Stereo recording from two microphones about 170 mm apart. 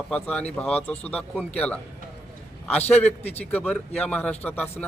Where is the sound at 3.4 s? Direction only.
10° left (ahead or behind).